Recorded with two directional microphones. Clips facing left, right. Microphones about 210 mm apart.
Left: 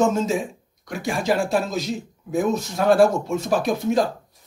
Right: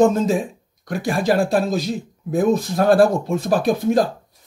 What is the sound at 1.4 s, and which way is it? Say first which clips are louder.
Speech: right 3 dB; 35° right (ahead or behind).